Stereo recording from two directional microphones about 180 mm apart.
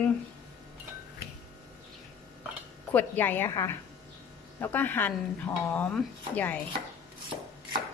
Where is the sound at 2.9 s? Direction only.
10° left (ahead or behind).